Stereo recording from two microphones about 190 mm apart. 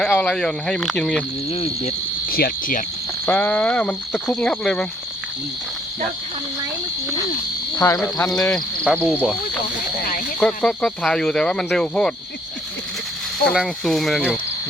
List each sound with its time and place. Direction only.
0.0 s speech: 5° left (ahead or behind)
1.5 s cricket: 30° left (ahead or behind)
2.2 s cricket: 50° left (ahead or behind)
3.2 s speech: 10° left (ahead or behind)
7.9 s speech: 5° left (ahead or behind)
10.4 s speech: 5° left (ahead or behind)
13.4 s speech: centre (ahead or behind)